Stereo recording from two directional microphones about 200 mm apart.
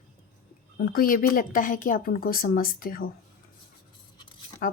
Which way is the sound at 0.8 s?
50° left (ahead or behind).